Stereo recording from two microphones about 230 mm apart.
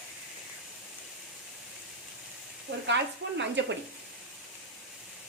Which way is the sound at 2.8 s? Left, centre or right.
Right.